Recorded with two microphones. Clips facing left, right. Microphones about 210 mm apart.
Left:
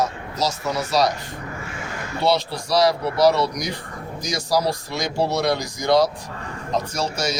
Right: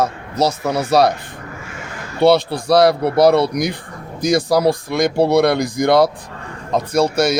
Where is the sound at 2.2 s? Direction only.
55° right (ahead or behind).